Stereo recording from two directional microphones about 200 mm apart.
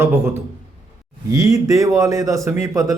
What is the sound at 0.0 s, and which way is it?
A man's voice, 10° right (ahead or behind).